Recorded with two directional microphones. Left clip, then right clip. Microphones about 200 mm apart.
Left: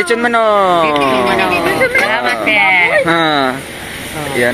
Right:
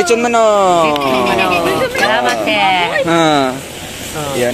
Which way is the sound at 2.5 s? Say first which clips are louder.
Left 6 dB; 15° right (ahead or behind).